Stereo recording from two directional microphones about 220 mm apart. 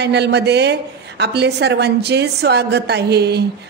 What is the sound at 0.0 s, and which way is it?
A woman's voice, 50° right (ahead or behind).